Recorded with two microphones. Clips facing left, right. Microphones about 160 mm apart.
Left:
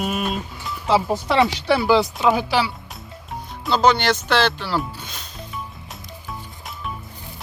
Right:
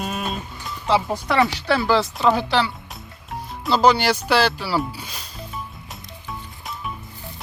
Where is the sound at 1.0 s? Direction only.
20° left (ahead or behind); by 5.2 s 5° right (ahead or behind).